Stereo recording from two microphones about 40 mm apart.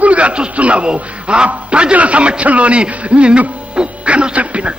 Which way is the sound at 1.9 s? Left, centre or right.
Right.